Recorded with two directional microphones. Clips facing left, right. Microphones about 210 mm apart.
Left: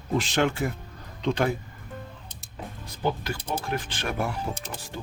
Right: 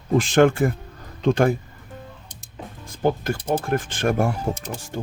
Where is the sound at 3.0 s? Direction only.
50° right (ahead or behind).